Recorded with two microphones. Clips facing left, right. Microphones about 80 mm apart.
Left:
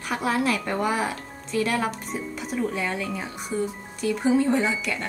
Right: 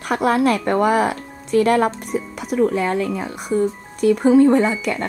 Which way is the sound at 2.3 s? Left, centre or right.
Right.